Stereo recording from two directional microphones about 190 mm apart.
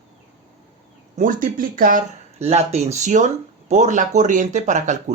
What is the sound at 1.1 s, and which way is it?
Speech, 45° right (ahead or behind).